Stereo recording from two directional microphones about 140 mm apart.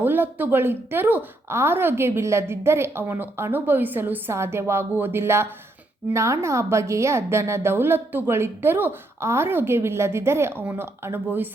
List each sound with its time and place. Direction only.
0.0 s a woman's voice: 15° right (ahead or behind)